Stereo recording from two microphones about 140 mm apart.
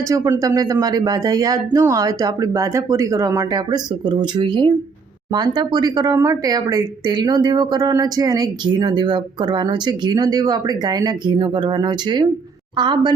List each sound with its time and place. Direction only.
0.1 s a woman's voice: 25° right (ahead or behind)